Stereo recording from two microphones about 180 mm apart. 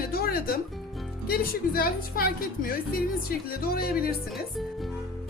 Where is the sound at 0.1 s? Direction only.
55° left (ahead or behind).